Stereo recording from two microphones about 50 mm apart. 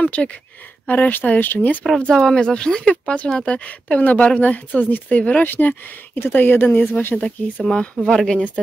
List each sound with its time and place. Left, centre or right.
0.0 s speech: left
0.8 s speech: left
2.1 s speech: centre; by 6.9 s left
6.9 s speech: left
7.2 s speech: left